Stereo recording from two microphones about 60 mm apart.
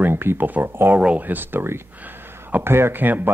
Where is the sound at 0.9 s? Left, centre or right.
Right.